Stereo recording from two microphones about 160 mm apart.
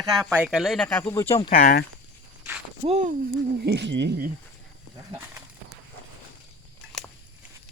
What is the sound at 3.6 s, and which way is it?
Speech, 90° right.